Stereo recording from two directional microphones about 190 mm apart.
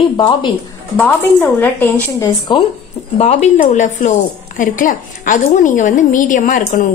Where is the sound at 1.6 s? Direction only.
10° left (ahead or behind).